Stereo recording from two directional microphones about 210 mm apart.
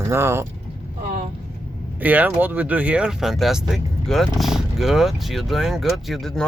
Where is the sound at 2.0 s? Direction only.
10° right (ahead or behind).